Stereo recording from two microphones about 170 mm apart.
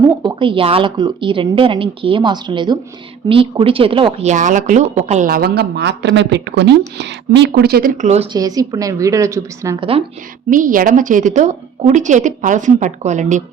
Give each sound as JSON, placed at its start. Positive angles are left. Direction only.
{"t": 0.2, "sound": "speech", "side_deg": -30}
{"t": 4.3, "sound": "a woman's voice", "side_deg": -45}
{"t": 5.3, "sound": "speech", "side_deg": -65}
{"t": 8.0, "sound": "speech", "side_deg": -40}
{"t": 8.3, "sound": "speech", "side_deg": -20}
{"t": 10.5, "sound": "a woman's voice", "side_deg": -50}